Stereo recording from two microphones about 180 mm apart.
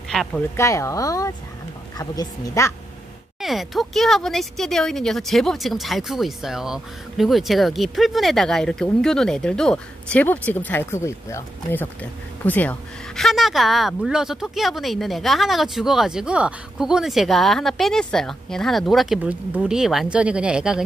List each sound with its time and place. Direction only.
0.1 s a sound: centre (ahead or behind)
0.6 s speech: 15° left (ahead or behind)
3.3 s speech: centre (ahead or behind)